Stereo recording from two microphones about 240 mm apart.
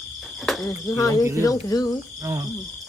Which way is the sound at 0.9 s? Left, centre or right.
Centre.